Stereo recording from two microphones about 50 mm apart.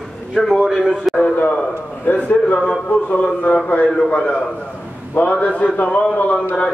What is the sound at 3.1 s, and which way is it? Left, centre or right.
A man's voice, left.